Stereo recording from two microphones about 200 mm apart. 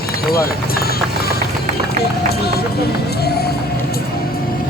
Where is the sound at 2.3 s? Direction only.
50° left (ahead or behind).